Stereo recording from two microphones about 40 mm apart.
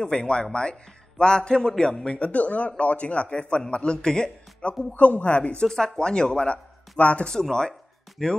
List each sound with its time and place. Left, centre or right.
0.0 s a man's voice: centre
2.1 s speech: left
4.9 s speech: left
5.6 s speech: centre; by 7.2 s left
7.2 s speech: centre